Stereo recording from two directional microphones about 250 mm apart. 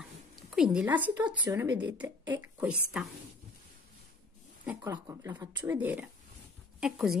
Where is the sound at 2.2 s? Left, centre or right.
Centre.